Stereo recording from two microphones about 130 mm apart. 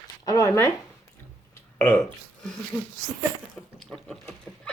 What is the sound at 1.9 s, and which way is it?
Speech, 10° left (ahead or behind).